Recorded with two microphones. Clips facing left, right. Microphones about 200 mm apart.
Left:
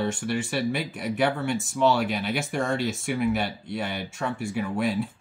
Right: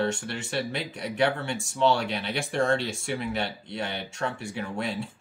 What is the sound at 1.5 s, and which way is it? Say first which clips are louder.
Speech: left 5 dB; 25° right (ahead or behind).